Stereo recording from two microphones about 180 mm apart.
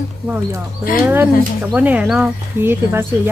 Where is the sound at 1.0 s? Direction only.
10° right (ahead or behind).